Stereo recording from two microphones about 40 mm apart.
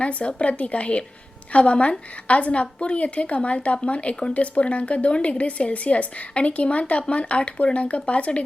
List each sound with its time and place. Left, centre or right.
0.0 s a woman's voice: left